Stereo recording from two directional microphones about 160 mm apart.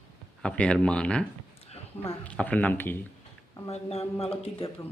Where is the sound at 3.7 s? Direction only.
40° left (ahead or behind).